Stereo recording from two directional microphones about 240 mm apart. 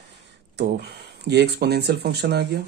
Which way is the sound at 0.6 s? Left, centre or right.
Right.